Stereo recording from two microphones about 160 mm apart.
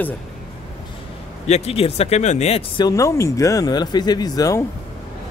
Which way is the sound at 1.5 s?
40° left (ahead or behind).